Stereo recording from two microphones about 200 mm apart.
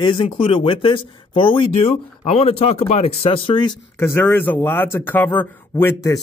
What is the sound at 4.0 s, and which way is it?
Speech, 10° left (ahead or behind).